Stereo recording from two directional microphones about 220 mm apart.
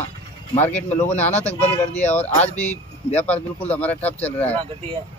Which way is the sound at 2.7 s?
30° left (ahead or behind).